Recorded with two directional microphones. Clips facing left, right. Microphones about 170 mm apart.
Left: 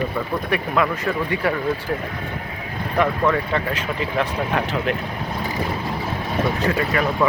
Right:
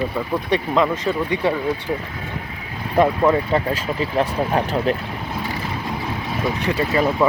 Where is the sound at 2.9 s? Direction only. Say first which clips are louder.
Right 4 dB; 25° right (ahead or behind).